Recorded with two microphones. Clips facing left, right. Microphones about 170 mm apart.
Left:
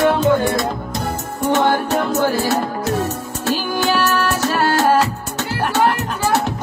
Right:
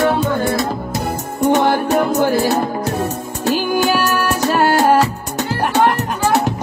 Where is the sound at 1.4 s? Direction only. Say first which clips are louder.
Right 2 dB; 15° right (ahead or behind).